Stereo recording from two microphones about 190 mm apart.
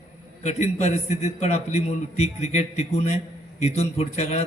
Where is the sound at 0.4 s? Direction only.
35° left (ahead or behind).